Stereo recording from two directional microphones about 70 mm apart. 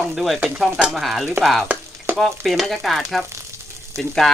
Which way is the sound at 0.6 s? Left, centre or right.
Centre.